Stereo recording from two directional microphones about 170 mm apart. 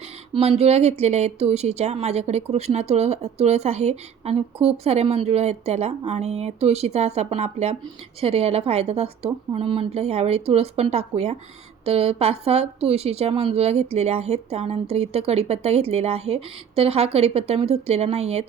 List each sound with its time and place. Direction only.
0.6 s a woman's voice: 40° right (ahead or behind)